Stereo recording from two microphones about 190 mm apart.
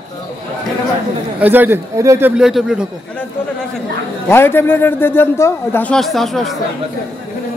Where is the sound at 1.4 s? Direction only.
10° right (ahead or behind).